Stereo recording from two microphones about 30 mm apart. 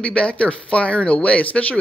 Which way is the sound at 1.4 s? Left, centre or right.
Left.